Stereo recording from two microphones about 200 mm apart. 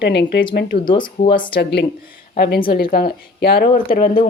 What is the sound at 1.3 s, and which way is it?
Speech, 55° left (ahead or behind).